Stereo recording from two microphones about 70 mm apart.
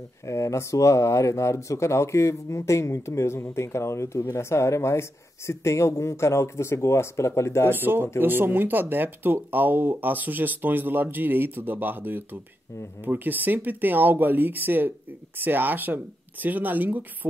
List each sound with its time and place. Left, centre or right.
0.3 s speech: left
7.7 s speech: right